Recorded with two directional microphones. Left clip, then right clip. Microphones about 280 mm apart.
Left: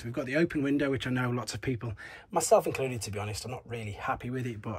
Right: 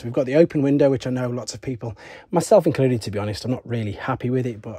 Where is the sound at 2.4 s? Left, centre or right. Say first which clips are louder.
Right 8 dB; right.